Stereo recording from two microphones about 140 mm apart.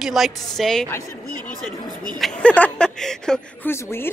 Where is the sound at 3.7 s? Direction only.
15° left (ahead or behind).